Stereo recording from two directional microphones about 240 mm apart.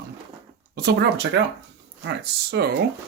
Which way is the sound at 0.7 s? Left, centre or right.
Right.